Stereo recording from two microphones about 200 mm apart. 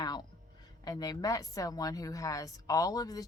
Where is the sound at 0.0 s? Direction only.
20° left (ahead or behind).